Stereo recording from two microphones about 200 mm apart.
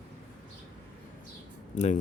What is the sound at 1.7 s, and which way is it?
Speech, 35° left (ahead or behind).